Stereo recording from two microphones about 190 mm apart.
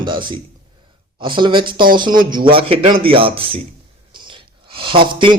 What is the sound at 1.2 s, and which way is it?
Speech, 25° right (ahead or behind).